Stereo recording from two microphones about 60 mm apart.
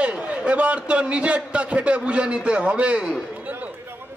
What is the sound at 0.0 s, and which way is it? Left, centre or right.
A man's voice, right.